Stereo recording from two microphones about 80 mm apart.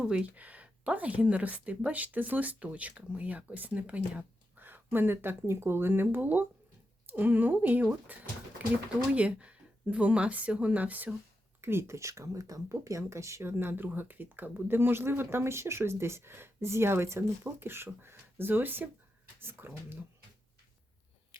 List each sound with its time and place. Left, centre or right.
0.0 s a woman's voice: centre
11.6 s speech: right